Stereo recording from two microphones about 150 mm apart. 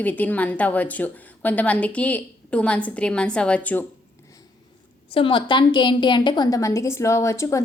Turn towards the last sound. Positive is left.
turn(degrees=20)  # may be behind; listen again after turning